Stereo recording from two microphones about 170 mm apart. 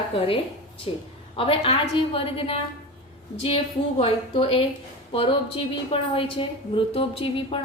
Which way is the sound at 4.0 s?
30° left (ahead or behind).